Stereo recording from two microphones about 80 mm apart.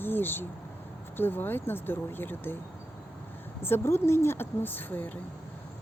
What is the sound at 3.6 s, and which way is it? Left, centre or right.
Speech, left.